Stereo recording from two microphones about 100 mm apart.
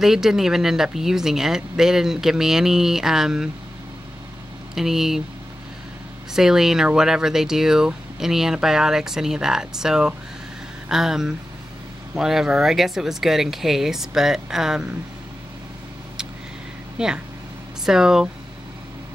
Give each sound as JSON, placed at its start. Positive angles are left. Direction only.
{"t": 0.0, "sound": "speech", "side_deg": -5}
{"t": 4.7, "sound": "speech", "side_deg": -5}
{"t": 6.3, "sound": "speech", "side_deg": -5}
{"t": 17.0, "sound": "speech", "side_deg": -5}